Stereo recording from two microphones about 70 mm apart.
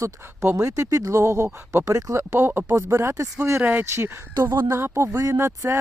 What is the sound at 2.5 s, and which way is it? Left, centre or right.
Speech, right.